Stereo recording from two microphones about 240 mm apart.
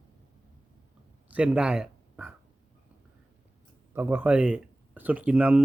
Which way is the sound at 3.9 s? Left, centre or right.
Centre.